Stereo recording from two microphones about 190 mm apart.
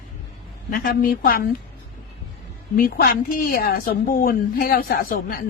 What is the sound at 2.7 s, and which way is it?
A woman's voice, 50° left (ahead or behind).